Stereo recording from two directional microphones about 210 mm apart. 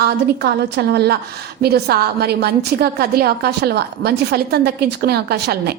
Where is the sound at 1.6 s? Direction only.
50° right (ahead or behind).